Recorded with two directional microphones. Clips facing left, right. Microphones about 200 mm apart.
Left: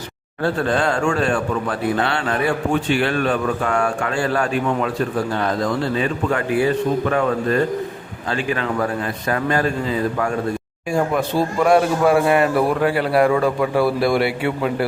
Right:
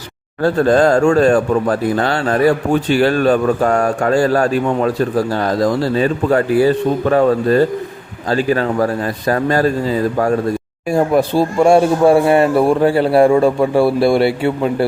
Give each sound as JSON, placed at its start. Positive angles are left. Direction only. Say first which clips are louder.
{"t": 0.4, "sound": "a man's voice", "louder": "right 7 dB", "side_deg": -40}